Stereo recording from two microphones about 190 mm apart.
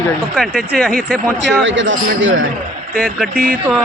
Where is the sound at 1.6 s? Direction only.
80° right.